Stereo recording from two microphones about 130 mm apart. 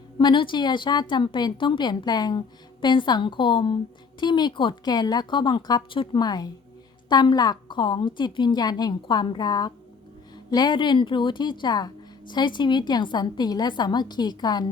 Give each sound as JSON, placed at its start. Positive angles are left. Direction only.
{"t": 0.2, "sound": "a woman's voice", "side_deg": 35}